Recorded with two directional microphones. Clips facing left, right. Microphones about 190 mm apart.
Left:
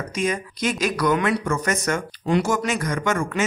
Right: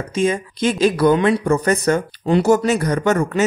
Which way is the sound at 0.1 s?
30° right (ahead or behind).